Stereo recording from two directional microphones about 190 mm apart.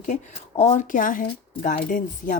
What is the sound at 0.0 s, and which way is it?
Speech, 40° left (ahead or behind).